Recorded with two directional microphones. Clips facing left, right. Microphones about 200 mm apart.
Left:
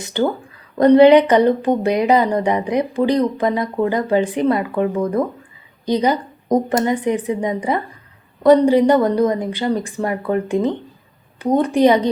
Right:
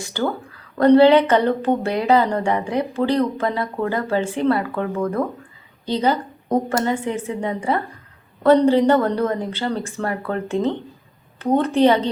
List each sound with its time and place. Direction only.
0.0 s a woman's voice: 20° left (ahead or behind)